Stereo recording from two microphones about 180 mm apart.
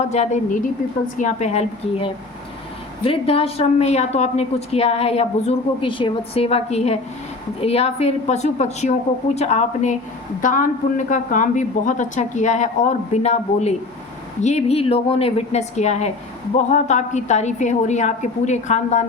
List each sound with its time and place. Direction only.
0.1 s a woman's voice: 40° left (ahead or behind)